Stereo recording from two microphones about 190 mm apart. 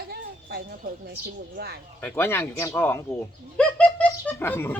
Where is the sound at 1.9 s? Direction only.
10° left (ahead or behind).